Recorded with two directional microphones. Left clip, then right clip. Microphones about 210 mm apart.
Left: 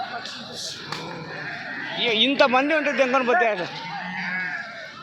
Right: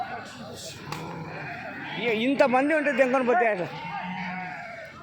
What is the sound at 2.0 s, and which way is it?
A man's voice, 15° right (ahead or behind).